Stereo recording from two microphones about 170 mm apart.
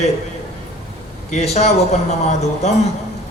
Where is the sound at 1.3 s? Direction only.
40° left (ahead or behind).